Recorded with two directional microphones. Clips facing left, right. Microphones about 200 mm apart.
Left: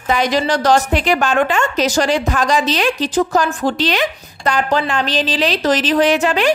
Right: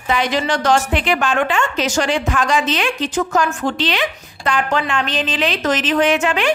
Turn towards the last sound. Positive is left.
turn(degrees=35)  # may be behind; listen again after turning